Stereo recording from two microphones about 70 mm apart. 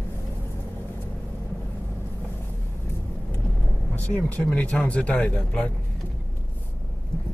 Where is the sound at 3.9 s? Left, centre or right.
Left.